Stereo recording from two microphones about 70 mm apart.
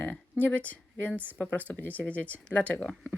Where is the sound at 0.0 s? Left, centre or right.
Left.